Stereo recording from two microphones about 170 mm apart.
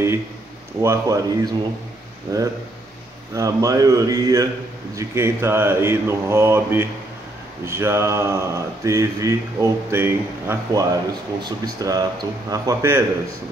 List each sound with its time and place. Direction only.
0.8 s speech: 20° right (ahead or behind)